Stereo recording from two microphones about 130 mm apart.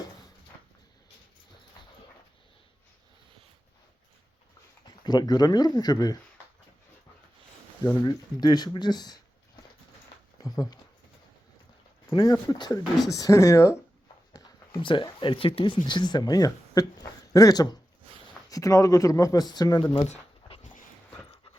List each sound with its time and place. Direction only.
5.0 s speech: 30° left (ahead or behind)
7.9 s speech: 35° left (ahead or behind)
10.4 s speech: 30° left (ahead or behind)
12.0 s speech: 25° left (ahead or behind)
14.8 s speech: 40° left (ahead or behind)
20.1 s dog: 65° left (ahead or behind)